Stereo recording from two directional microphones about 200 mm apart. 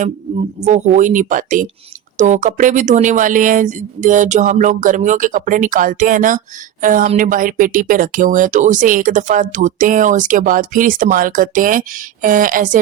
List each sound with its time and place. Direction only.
0.6 s speech: 40° right (ahead or behind)